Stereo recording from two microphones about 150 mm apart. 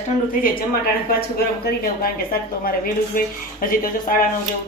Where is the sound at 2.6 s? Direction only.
75° left (ahead or behind).